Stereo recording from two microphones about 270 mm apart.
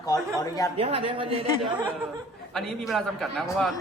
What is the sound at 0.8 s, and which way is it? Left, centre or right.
Speech, right.